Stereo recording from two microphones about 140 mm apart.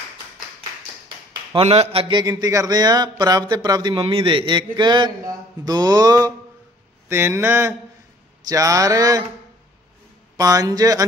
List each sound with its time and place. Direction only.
1.0 s a sound: 40° right (ahead or behind)
2.2 s speech: 25° right (ahead or behind)
10.3 s speech: 25° right (ahead or behind)